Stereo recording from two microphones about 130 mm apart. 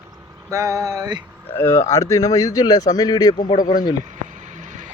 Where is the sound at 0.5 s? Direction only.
25° right (ahead or behind).